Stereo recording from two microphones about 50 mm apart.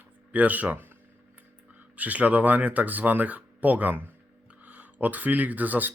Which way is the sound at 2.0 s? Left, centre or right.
Right.